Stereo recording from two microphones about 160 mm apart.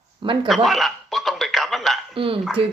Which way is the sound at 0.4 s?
Centre (ahead or behind).